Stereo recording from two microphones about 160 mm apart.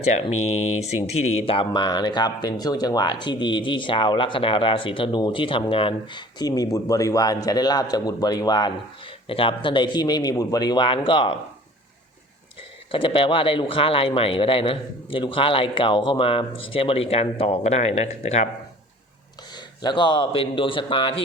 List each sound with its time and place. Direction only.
0.0 s speech: 40° left (ahead or behind)
12.9 s a man's voice: 35° left (ahead or behind)
19.5 s a man's voice: 25° left (ahead or behind)